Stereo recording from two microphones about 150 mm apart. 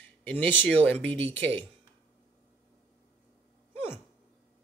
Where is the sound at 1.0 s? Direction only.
40° right (ahead or behind).